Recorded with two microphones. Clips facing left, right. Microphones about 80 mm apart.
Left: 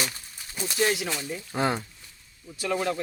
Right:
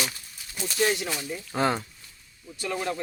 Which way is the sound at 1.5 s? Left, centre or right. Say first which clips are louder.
Right 1 dB; centre.